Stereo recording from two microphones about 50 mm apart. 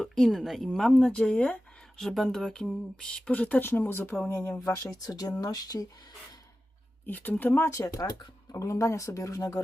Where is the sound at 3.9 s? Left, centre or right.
Left.